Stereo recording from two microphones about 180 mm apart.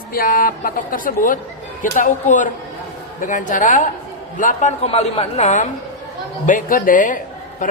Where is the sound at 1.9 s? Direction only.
45° left (ahead or behind).